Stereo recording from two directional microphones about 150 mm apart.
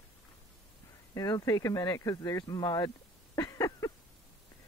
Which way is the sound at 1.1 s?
20° left (ahead or behind).